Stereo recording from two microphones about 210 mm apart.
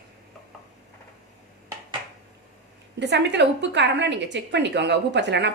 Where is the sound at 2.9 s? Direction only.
55° right (ahead or behind).